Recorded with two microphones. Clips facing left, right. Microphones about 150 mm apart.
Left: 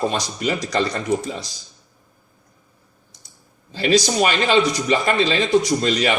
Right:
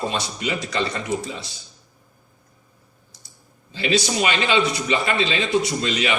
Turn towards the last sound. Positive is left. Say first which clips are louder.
# left 4 dB
turn(degrees=40)  # may be behind; listen again after turning